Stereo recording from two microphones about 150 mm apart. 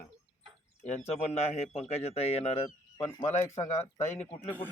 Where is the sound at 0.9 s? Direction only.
45° left (ahead or behind).